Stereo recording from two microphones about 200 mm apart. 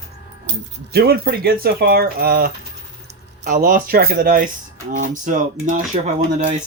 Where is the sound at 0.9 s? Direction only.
50° right (ahead or behind).